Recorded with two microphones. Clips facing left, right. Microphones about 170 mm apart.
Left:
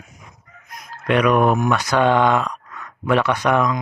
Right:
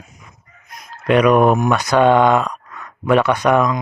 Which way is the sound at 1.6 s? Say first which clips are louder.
Right 3 dB; 15° right (ahead or behind).